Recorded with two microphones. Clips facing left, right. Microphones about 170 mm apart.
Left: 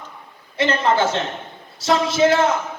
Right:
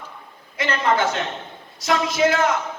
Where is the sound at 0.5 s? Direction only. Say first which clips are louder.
Left 3 dB; 30° left (ahead or behind).